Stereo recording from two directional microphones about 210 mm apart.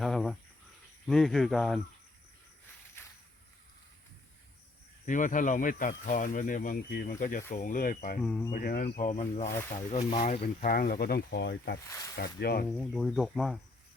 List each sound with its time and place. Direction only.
0.0 s cricket: centre (ahead or behind)
1.0 s speech: centre (ahead or behind)
5.0 s speech: 40° left (ahead or behind)
8.2 s speech: 5° left (ahead or behind)
8.5 s speech: 40° left (ahead or behind)
9.5 s speech: 15° left (ahead or behind)
9.9 s speech: 30° left (ahead or behind); by 11.8 s 55° left (ahead or behind)
11.9 s speech: 15° left (ahead or behind)
12.1 s speech: 50° left (ahead or behind)
12.8 s speech: centre (ahead or behind)